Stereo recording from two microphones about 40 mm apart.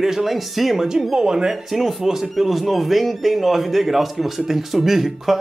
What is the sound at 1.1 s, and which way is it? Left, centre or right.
Speech, centre.